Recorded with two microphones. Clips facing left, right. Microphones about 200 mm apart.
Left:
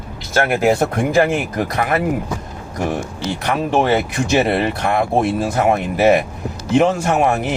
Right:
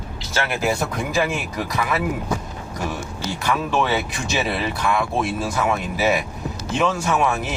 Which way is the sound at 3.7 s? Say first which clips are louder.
Left 9 dB; 55° left (ahead or behind).